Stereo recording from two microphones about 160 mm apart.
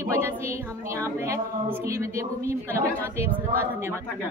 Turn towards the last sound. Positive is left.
turn(degrees=-15)  # may be behind; listen again after turning